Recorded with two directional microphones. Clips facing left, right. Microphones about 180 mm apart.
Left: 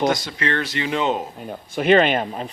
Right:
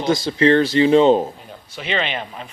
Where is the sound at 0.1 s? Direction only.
30° right (ahead or behind).